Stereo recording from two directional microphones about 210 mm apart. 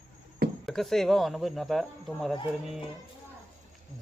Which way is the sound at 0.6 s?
Centre (ahead or behind).